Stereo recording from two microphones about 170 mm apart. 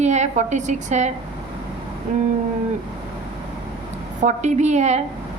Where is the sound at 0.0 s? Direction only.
40° right (ahead or behind).